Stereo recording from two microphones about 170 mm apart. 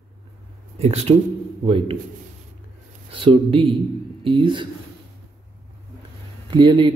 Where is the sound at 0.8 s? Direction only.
40° right (ahead or behind).